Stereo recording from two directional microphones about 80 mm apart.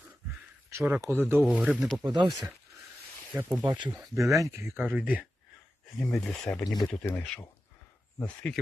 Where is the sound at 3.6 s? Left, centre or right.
Right.